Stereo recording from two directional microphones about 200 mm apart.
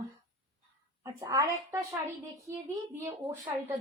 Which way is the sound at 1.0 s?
15° right (ahead or behind).